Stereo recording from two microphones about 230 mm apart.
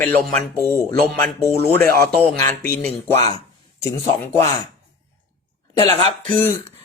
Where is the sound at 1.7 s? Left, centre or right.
Centre.